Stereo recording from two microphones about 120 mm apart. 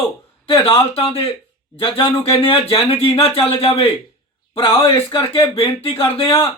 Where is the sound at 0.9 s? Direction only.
50° left (ahead or behind).